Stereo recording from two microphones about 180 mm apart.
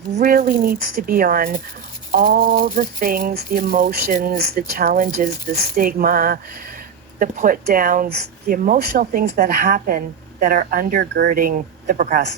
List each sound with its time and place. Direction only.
0.2 s speech: 55° right (ahead or behind)